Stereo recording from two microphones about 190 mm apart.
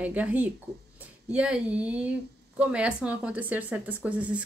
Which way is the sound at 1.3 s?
5° right (ahead or behind).